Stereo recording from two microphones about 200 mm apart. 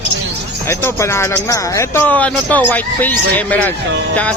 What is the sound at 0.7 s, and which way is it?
Speech, 15° left (ahead or behind).